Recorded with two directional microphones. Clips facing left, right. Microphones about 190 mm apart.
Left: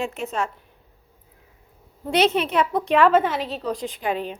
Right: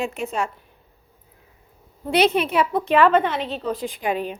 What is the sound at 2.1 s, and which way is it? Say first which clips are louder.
A woman's voice: right 1 dB; 10° right (ahead or behind).